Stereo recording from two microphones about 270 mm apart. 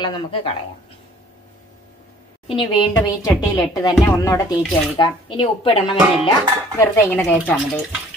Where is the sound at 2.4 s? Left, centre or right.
Centre.